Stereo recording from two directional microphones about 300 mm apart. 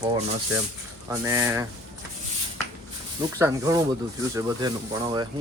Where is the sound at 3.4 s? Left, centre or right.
Centre.